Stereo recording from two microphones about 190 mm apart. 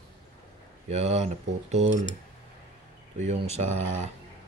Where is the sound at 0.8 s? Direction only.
35° right (ahead or behind).